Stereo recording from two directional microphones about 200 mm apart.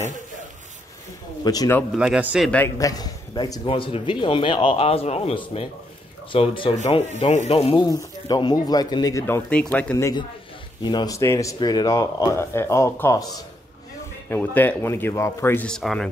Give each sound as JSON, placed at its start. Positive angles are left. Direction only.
{"t": 1.4, "sound": "speech", "side_deg": 20}
{"t": 2.0, "sound": "a man's voice", "side_deg": -5}
{"t": 2.5, "sound": "a man's voice", "side_deg": 15}
{"t": 7.8, "sound": "speech", "side_deg": 20}